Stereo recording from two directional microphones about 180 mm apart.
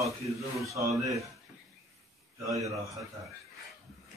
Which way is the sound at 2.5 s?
20° right (ahead or behind).